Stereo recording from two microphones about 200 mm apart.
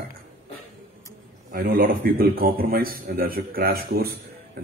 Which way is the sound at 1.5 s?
50° right (ahead or behind).